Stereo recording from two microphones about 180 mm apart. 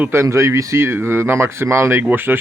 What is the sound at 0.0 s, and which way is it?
Speech, 15° right (ahead or behind).